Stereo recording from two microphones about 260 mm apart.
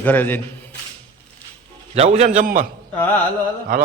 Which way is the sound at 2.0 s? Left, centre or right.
Right.